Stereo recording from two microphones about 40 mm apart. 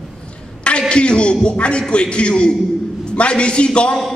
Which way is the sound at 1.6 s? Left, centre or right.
Left.